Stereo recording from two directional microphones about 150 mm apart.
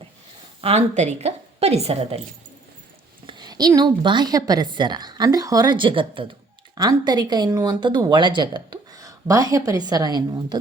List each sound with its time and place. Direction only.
0.6 s a woman's voice: 45° right (ahead or behind)
3.2 s speech: 30° right (ahead or behind)